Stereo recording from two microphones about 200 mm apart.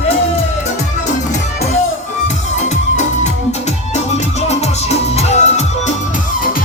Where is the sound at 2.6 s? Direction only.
35° left (ahead or behind).